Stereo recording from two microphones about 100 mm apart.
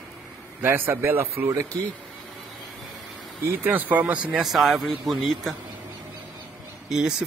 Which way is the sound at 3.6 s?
15° right (ahead or behind).